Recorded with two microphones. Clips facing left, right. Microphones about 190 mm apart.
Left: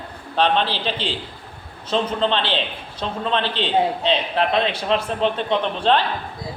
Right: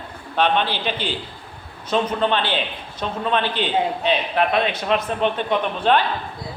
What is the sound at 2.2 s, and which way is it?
A man's voice, 25° left (ahead or behind).